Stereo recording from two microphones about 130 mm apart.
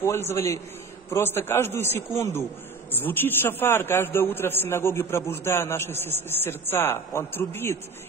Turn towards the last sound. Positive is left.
turn(degrees=15)  # may be behind; listen again after turning